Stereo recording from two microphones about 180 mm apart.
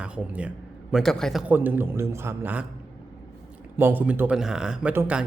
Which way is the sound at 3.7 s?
10° right (ahead or behind).